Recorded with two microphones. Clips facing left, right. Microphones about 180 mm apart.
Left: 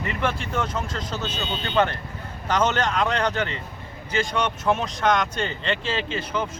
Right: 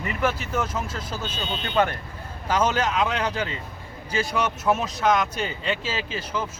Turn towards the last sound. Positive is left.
turn(degrees=-5)  # may be behind; listen again after turning